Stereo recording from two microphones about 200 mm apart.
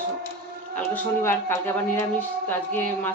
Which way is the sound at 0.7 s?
10° left (ahead or behind).